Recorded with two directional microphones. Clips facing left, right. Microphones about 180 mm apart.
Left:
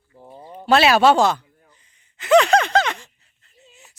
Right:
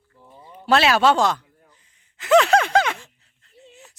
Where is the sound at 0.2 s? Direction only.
40° left (ahead or behind).